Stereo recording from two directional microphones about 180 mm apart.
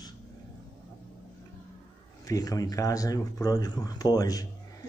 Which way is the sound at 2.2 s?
20° left (ahead or behind).